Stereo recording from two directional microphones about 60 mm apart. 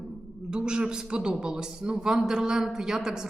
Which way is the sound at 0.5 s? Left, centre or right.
Centre.